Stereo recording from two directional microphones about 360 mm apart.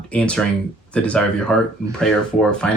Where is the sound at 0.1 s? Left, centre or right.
Centre.